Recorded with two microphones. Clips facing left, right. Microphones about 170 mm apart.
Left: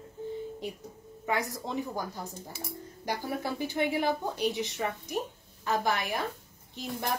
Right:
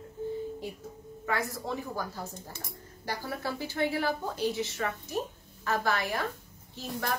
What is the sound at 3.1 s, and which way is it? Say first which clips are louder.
Speech: left 2 dB; 15° left (ahead or behind).